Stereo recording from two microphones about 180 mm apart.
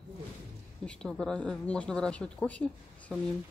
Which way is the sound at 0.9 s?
5° left (ahead or behind).